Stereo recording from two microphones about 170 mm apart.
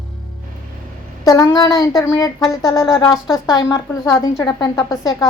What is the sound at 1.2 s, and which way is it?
A woman's voice, 20° left (ahead or behind).